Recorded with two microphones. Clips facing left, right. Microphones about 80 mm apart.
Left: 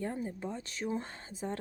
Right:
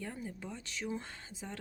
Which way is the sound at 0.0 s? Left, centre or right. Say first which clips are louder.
Left 6 dB; left.